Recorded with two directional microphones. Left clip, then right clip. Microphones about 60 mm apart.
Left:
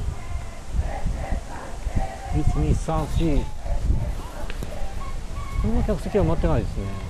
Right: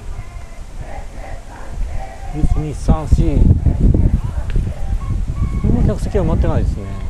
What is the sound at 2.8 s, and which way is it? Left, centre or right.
Speech, right.